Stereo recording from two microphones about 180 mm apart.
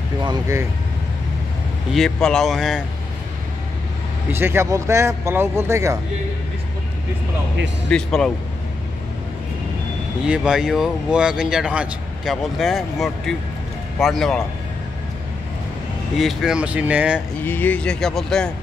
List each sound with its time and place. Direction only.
0.2 s speech: 20° right (ahead or behind)
1.9 s speech: centre (ahead or behind)
4.3 s speech: 15° right (ahead or behind)
7.9 s speech: 5° left (ahead or behind)
10.2 s speech: 5° right (ahead or behind)
16.2 s speech: centre (ahead or behind)
17.4 s speech: 10° left (ahead or behind)